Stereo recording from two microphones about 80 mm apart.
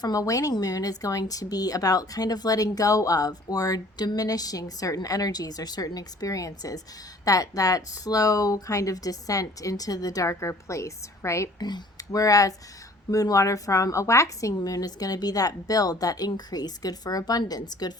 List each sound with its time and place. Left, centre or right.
0.0 s speech: left
11.6 s speech: left